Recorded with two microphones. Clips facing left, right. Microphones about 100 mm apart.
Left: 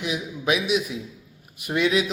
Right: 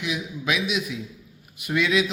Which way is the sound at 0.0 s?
35° left (ahead or behind).